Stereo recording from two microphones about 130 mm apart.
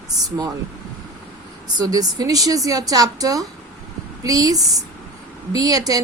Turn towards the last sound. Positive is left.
turn(degrees=-30)  # may be behind; listen again after turning